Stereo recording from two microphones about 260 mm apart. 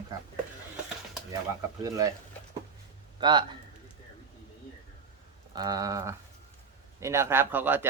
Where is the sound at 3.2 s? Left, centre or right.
Centre.